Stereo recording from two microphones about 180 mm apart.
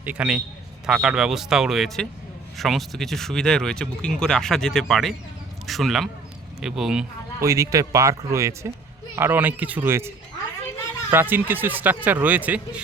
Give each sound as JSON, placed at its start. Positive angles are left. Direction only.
{"t": 0.0, "sound": "speech", "side_deg": -5}
{"t": 7.4, "sound": "speech", "side_deg": -15}
{"t": 11.1, "sound": "speech", "side_deg": -10}